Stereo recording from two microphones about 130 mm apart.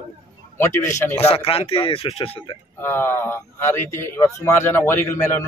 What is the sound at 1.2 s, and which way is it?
Speech, 45° left (ahead or behind).